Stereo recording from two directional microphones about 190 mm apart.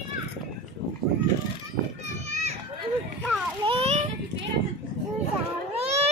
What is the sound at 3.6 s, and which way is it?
Children playing, 30° right (ahead or behind).